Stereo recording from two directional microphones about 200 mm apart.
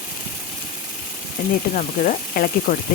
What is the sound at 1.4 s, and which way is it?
Speech, 45° left (ahead or behind).